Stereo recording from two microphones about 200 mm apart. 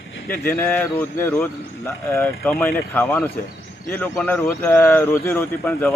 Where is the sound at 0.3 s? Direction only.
10° left (ahead or behind).